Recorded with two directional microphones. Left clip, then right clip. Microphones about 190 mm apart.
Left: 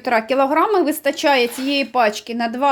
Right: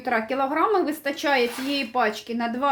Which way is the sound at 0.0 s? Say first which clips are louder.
Left 7 dB; 50° left (ahead or behind).